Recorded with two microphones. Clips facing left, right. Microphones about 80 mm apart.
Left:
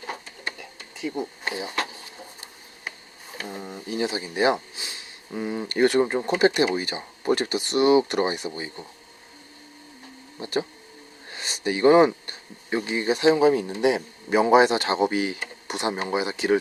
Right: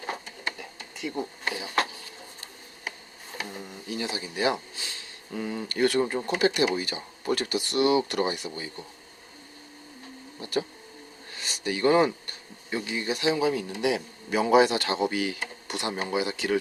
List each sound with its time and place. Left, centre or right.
1.0 s speech: centre
3.6 s a man's voice: left
10.4 s a man's voice: left
11.3 s a sound: left
12.7 s a man's voice: left